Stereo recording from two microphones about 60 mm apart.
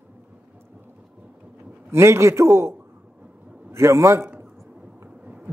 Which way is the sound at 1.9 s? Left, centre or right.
Right.